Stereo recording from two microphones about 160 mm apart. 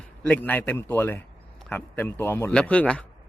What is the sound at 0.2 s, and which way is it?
A man's voice, 10° left (ahead or behind).